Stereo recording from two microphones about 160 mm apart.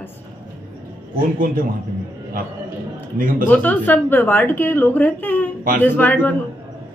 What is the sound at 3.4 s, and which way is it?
A woman's voice, 10° left (ahead or behind).